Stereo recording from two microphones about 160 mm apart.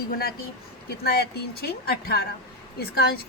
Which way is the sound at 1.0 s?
90° left.